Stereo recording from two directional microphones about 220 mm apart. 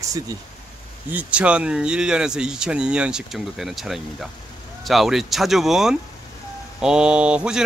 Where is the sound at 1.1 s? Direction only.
5° right (ahead or behind).